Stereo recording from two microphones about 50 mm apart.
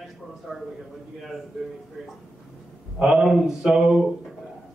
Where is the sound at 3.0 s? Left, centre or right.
Centre.